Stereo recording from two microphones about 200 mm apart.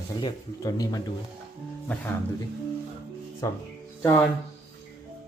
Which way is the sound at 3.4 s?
15° left (ahead or behind).